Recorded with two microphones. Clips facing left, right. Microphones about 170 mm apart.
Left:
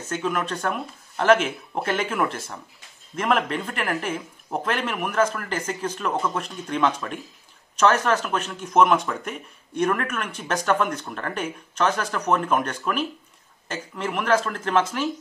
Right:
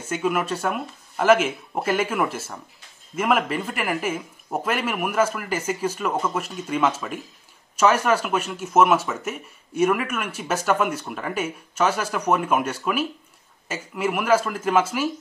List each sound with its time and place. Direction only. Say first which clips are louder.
0.0 s speech: right 2 dB; 10° right (ahead or behind)